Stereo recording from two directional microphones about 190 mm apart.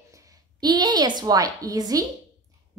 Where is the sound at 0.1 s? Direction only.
15° right (ahead or behind).